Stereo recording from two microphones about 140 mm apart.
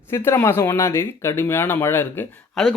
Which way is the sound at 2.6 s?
Centre (ahead or behind).